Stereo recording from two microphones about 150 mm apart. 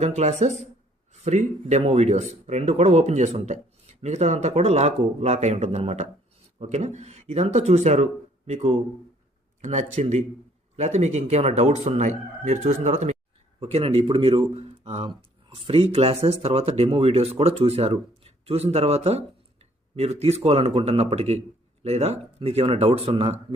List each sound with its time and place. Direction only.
0.0 s speech: 50° right (ahead or behind)